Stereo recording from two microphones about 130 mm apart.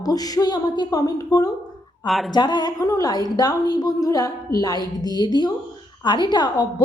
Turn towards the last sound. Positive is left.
turn(degrees=35)  # may be behind; listen again after turning